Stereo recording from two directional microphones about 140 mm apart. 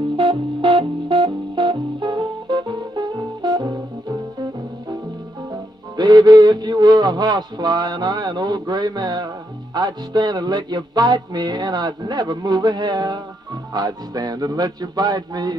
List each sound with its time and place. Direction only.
0.2 s music: 35° right (ahead or behind)
5.5 s music: 30° right (ahead or behind)
13.7 s speech: 30° right (ahead or behind)